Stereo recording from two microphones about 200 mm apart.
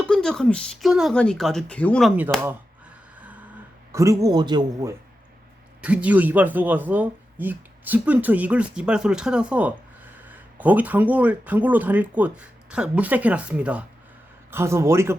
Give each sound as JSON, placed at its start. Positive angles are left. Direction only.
{"t": 0.0, "sound": "speech", "side_deg": 5}
{"t": 3.2, "sound": "a sound", "side_deg": -5}
{"t": 3.9, "sound": "speech", "side_deg": -15}
{"t": 5.8, "sound": "speech", "side_deg": -5}